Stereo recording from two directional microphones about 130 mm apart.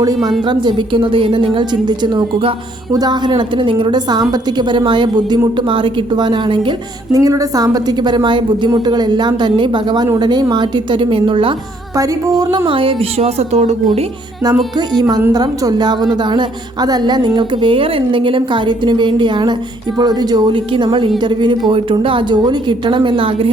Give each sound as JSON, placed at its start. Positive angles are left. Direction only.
{"t": 0.4, "sound": "a woman's voice", "side_deg": -35}
{"t": 7.1, "sound": "a woman's voice", "side_deg": -25}
{"t": 11.9, "sound": "speech", "side_deg": -30}
{"t": 14.8, "sound": "a woman's voice", "side_deg": -30}